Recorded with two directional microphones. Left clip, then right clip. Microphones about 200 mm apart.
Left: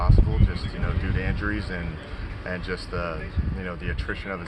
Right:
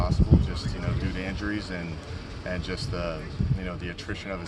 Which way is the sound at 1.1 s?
5° right (ahead or behind).